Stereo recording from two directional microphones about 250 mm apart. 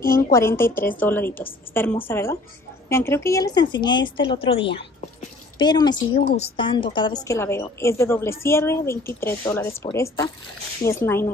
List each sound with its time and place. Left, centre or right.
0.1 s a woman's voice: centre